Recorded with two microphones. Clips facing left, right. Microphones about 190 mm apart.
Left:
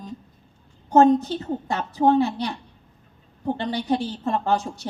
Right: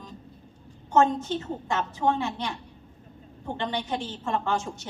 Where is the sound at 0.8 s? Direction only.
35° left (ahead or behind).